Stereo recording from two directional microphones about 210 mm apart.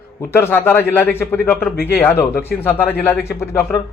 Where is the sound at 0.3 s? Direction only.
10° left (ahead or behind).